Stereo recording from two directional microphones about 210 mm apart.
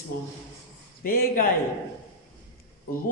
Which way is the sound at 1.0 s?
45° left (ahead or behind).